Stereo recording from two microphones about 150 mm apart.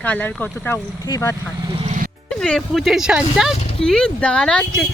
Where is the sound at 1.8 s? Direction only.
55° right (ahead or behind).